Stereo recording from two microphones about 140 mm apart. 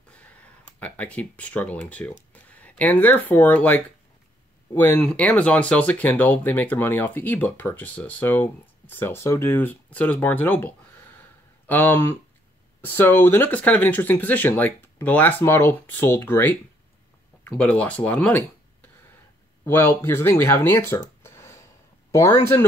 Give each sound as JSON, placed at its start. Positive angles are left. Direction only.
{"t": 0.7, "sound": "speech", "side_deg": 10}
{"t": 19.6, "sound": "speech", "side_deg": 15}
{"t": 21.2, "sound": "a sound", "side_deg": 20}
{"t": 22.1, "sound": "speech", "side_deg": 20}